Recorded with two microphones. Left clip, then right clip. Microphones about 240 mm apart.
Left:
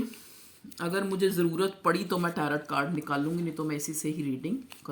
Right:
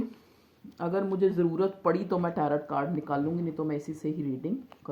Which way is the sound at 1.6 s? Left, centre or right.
Left.